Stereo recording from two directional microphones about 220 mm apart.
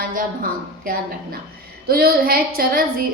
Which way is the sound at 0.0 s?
40° right (ahead or behind).